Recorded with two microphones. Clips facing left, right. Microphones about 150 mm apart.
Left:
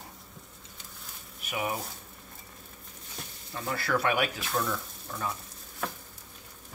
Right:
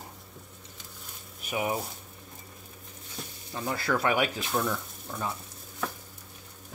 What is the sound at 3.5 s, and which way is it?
Speech, 20° right (ahead or behind).